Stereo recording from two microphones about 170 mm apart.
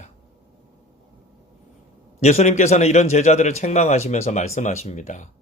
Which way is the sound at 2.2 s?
45° left (ahead or behind).